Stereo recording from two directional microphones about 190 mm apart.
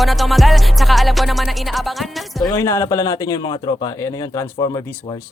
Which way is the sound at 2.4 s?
15° left (ahead or behind).